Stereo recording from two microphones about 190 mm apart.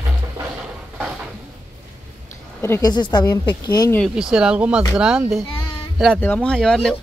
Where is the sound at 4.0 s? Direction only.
5° right (ahead or behind).